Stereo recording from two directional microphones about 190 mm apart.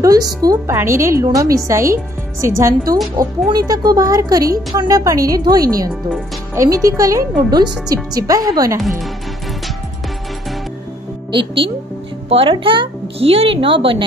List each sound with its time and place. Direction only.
0.0 s a woman's voice: 20° right (ahead or behind)
11.3 s a woman's voice: 25° right (ahead or behind)